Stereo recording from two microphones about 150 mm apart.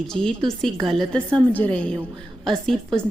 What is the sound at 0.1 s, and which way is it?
A woman's voice, 5° left (ahead or behind).